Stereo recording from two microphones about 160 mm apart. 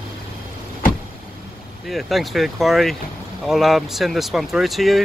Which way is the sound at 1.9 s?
Centre (ahead or behind).